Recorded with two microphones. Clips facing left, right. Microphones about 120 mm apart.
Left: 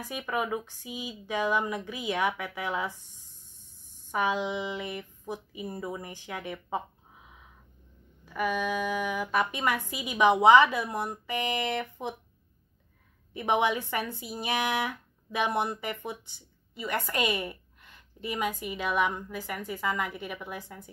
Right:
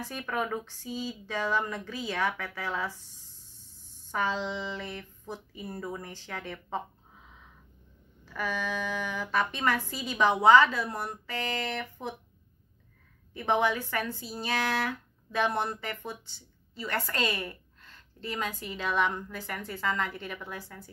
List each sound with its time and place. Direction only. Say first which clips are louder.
0.0 s speech: left 1 dB; 10° left (ahead or behind)
4.1 s speech: left 2 dB; 15° left (ahead or behind)
8.3 s speech: left 4 dB; 10° left (ahead or behind)
13.3 s speech: left 1 dB; 15° left (ahead or behind)